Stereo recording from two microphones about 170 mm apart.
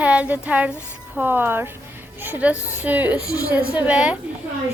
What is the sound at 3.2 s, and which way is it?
Speech, 20° left (ahead or behind).